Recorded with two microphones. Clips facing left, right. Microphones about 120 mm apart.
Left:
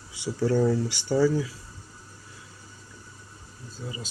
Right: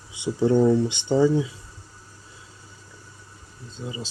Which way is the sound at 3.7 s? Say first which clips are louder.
Right 4 dB; 25° right (ahead or behind).